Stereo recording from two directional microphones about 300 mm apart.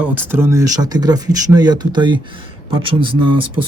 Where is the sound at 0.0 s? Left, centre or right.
Centre.